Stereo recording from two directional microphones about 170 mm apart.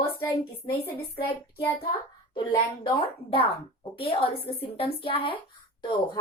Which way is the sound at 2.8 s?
30° left (ahead or behind).